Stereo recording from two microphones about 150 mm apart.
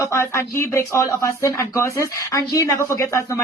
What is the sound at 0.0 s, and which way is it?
Speech, 20° left (ahead or behind).